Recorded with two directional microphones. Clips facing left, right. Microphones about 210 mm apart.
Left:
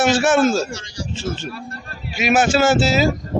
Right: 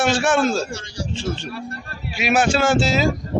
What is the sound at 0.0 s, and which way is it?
Speech, 5° left (ahead or behind).